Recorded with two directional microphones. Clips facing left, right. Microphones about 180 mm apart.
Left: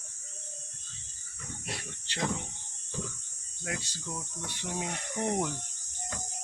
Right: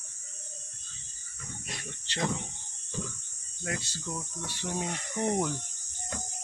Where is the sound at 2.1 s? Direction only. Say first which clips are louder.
Right 1 dB; 10° left (ahead or behind).